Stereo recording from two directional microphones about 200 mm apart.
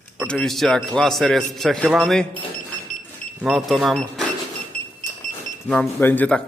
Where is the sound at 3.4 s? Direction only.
Centre (ahead or behind).